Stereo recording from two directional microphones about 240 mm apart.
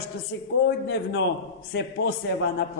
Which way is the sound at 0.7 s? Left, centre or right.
Left.